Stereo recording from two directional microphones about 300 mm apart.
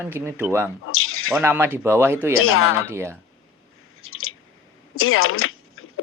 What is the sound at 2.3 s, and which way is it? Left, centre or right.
Speech, left.